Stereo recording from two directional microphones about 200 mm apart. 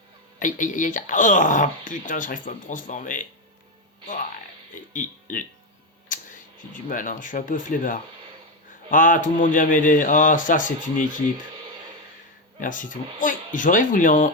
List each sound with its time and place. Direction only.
0.3 s speech: 40° left (ahead or behind)
4.7 s speech: 40° left (ahead or behind)
12.5 s speech: 40° left (ahead or behind)